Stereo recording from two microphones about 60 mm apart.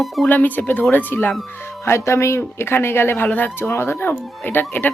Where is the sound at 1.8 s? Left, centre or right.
Left.